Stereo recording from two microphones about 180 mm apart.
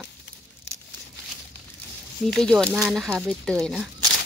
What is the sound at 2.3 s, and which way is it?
Speech, centre (ahead or behind).